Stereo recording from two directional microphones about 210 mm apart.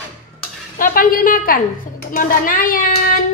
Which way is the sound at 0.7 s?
40° left (ahead or behind).